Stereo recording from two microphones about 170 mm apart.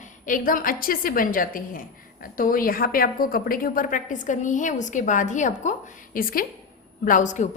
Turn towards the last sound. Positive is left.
turn(degrees=45)  # may be behind; listen again after turning